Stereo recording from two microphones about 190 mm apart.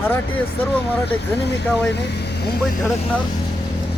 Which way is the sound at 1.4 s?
60° left (ahead or behind).